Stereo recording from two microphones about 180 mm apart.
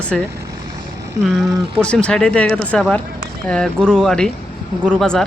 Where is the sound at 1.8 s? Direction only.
5° left (ahead or behind).